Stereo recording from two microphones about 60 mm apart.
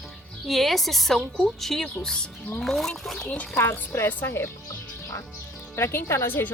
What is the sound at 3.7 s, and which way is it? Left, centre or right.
Speech, left.